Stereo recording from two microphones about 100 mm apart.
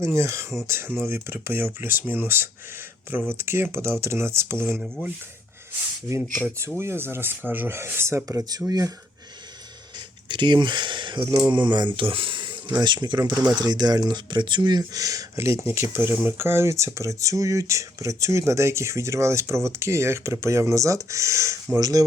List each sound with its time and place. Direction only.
0.0 s speech: 25° right (ahead or behind)
6.7 s speech: 25° right (ahead or behind)
8.4 s speech: 40° right (ahead or behind)
10.2 s speech: 50° right (ahead or behind)